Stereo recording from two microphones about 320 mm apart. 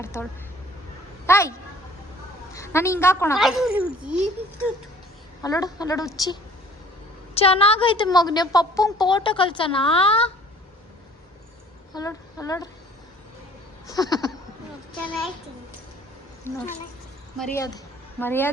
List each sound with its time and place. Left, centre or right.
0.0 s speech: centre
1.3 s a woman's voice: centre
5.4 s a woman's voice: centre
11.9 s speech: centre
13.8 s a woman's voice: centre
15.0 s a child's voice: centre
16.5 s a woman's voice: centre